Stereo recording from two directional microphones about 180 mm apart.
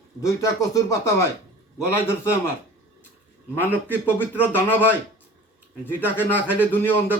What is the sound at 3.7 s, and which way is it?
Speech, 10° left (ahead or behind).